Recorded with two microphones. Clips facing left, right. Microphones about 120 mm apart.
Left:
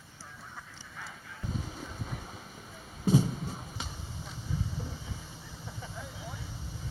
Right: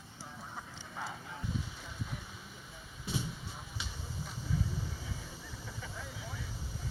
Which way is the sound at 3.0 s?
40° left (ahead or behind).